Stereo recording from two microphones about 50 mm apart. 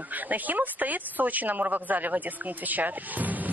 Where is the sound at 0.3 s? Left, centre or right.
Right.